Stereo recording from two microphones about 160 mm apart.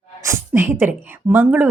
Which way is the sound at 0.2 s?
15° right (ahead or behind).